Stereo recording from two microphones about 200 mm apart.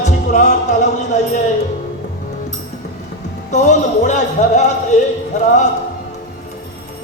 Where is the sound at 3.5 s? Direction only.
35° left (ahead or behind).